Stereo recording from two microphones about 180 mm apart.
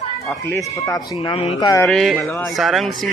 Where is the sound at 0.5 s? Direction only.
15° left (ahead or behind).